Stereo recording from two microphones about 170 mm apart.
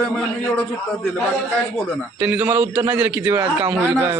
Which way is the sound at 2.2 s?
5° right (ahead or behind).